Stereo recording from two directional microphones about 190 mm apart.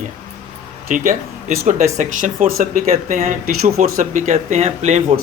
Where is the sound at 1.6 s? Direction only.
40° right (ahead or behind).